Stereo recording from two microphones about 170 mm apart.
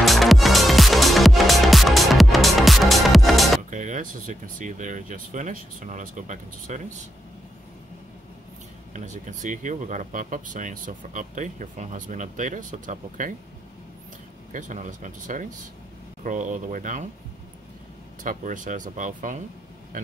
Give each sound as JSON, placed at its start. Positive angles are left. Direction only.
{"t": 0.0, "sound": "music", "side_deg": 0}
{"t": 3.7, "sound": "speech", "side_deg": -45}
{"t": 8.9, "sound": "speech", "side_deg": -45}
{"t": 14.5, "sound": "speech", "side_deg": -45}
{"t": 18.2, "sound": "speech", "side_deg": -50}